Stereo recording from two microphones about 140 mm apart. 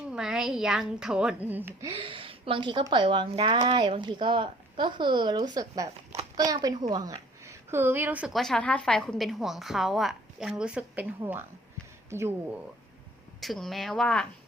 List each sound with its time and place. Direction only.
0.1 s a woman's voice: 5° right (ahead or behind)
2.0 s a woman's voice: 40° right (ahead or behind); by 8.3 s 10° right (ahead or behind)
8.3 s a woman's voice: centre (ahead or behind); by 12.3 s 20° right (ahead or behind)
13.4 s a woman's voice: centre (ahead or behind)